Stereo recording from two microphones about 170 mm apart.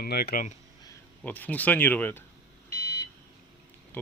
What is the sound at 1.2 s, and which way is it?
Speech, 10° left (ahead or behind).